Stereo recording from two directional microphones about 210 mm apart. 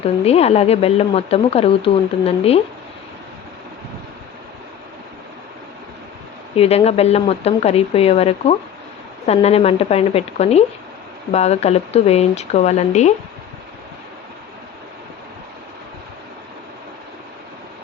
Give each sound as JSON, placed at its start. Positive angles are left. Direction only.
{"t": 0.0, "sound": "speech", "side_deg": 30}
{"t": 6.6, "sound": "speech", "side_deg": 30}